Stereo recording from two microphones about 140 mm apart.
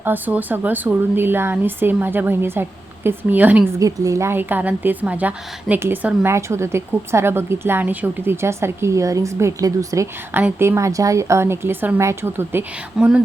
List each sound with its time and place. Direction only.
0.0 s a woman's voice: 10° right (ahead or behind)
3.8 s a woman's voice: 25° right (ahead or behind)